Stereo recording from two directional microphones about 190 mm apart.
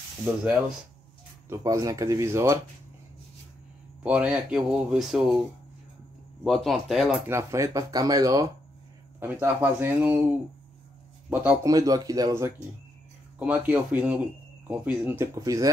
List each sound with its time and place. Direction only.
1.5 s speech: 15° right (ahead or behind)
4.0 s speech: 5° right (ahead or behind)
6.4 s speech: centre (ahead or behind)
7.2 s speech: 15° right (ahead or behind)
11.2 s speech: 10° right (ahead or behind)